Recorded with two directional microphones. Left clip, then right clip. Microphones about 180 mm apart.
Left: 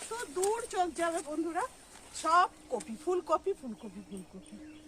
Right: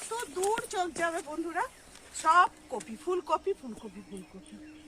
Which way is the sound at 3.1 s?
35° left (ahead or behind).